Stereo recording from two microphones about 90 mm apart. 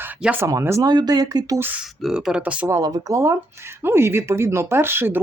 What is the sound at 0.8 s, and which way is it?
Speech, 50° right (ahead or behind).